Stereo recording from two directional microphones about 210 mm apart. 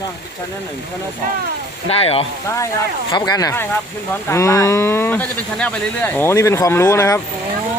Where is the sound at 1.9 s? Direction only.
25° left (ahead or behind).